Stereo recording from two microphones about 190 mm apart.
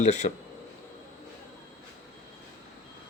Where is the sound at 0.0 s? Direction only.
35° left (ahead or behind).